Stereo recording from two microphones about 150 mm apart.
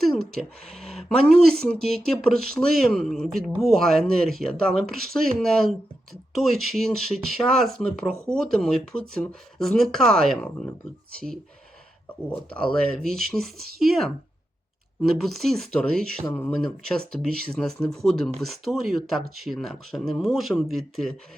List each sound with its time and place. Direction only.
0.7 s speech: centre (ahead or behind)
12.3 s speech: 5° left (ahead or behind)
15.2 s speech: centre (ahead or behind)